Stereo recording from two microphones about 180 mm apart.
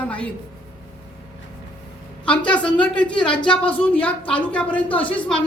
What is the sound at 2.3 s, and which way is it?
Speech, 5° left (ahead or behind).